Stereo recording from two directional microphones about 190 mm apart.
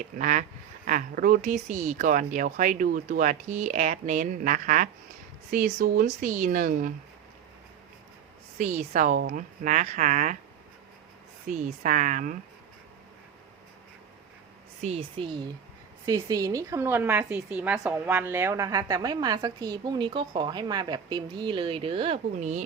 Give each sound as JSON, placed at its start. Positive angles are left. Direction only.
{"t": 0.0, "sound": "speech", "side_deg": -45}
{"t": 8.5, "sound": "speech", "side_deg": -40}
{"t": 11.4, "sound": "speech", "side_deg": -40}
{"t": 14.8, "sound": "a woman's voice", "side_deg": -35}